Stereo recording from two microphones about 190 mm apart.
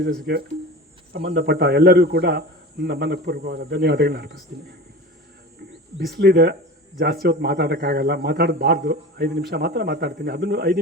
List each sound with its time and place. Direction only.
0.0 s a man's voice: 60° right (ahead or behind)
6.1 s a man's voice: 60° right (ahead or behind)